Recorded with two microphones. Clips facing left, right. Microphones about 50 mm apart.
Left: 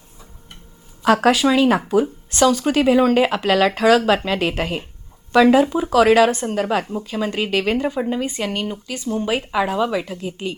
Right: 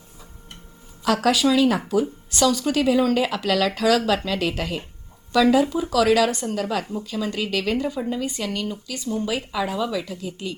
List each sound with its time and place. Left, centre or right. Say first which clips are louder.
1.0 s speech: left 4 dB; left